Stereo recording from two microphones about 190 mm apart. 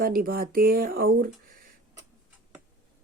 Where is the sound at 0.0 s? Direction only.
50° right (ahead or behind).